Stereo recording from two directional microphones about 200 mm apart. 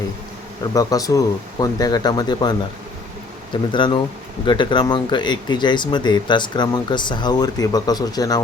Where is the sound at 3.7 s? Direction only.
25° left (ahead or behind).